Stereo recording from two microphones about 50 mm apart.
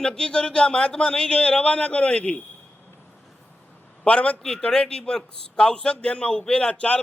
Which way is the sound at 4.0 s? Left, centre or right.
Left.